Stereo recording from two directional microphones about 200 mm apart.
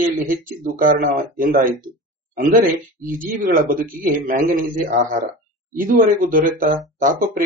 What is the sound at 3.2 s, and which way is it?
Speech, 45° right (ahead or behind).